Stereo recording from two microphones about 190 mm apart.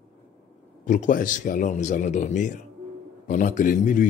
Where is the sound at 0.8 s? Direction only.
40° left (ahead or behind).